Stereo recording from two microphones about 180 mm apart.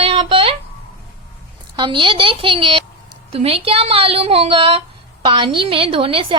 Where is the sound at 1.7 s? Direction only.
25° right (ahead or behind).